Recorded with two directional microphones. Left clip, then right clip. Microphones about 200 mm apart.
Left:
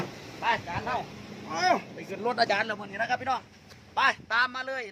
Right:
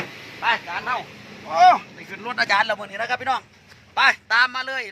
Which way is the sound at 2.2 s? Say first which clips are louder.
Right 6 dB; 10° right (ahead or behind).